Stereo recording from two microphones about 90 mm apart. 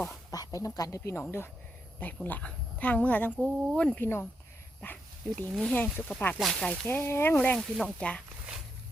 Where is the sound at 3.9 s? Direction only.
25° left (ahead or behind).